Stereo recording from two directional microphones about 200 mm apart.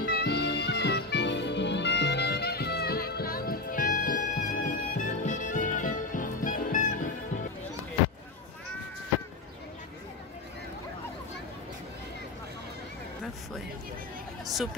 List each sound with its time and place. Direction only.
0.0 s music: 50° left (ahead or behind)
14.5 s speech: centre (ahead or behind)